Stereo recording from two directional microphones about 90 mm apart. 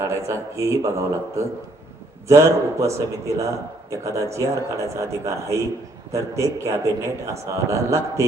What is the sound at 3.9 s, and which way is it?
A man's voice, 35° right (ahead or behind).